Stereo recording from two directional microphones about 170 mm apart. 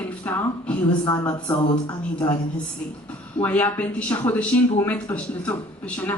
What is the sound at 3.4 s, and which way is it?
Speech, 10° left (ahead or behind).